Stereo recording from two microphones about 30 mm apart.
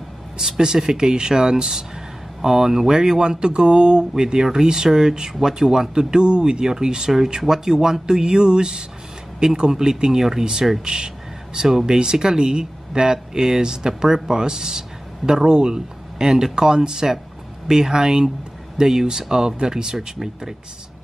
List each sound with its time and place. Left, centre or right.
0.4 s speech: centre
0.8 s speech: right